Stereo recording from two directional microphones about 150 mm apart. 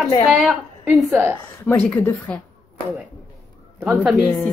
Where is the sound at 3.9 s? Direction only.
Centre (ahead or behind).